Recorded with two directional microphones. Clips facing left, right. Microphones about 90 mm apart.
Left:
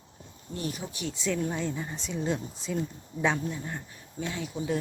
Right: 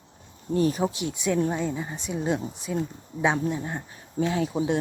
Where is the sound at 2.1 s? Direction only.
50° right (ahead or behind).